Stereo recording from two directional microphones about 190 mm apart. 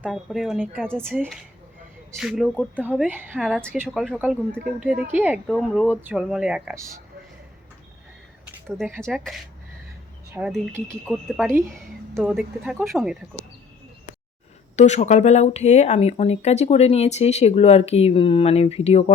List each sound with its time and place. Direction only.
0.0 s speech: centre (ahead or behind)
3.1 s a woman's voice: 10° right (ahead or behind)
9.0 s speech: centre (ahead or behind)
10.4 s a woman's voice: 20° right (ahead or behind)
14.8 s speech: 35° left (ahead or behind)